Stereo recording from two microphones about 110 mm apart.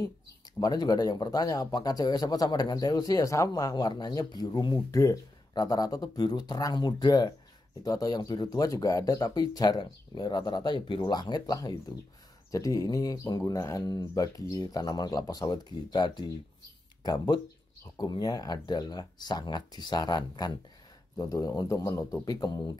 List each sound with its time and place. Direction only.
0.6 s speech: 35° left (ahead or behind)